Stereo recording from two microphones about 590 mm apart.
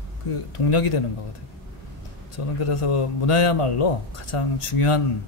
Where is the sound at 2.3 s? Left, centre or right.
Left.